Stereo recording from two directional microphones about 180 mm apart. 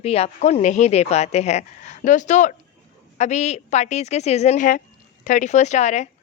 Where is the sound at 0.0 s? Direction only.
35° left (ahead or behind).